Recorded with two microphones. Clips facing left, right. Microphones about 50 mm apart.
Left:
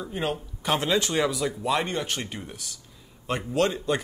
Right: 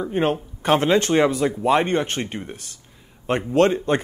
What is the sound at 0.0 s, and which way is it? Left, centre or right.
Speech, right.